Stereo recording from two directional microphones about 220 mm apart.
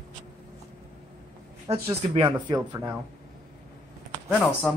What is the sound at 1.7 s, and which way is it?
Speech, 25° right (ahead or behind).